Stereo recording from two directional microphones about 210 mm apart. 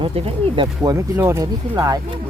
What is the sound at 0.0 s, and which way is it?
Speech, 25° right (ahead or behind).